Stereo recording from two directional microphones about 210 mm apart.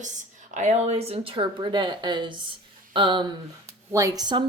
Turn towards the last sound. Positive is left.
turn(degrees=-20)  # may be behind; listen again after turning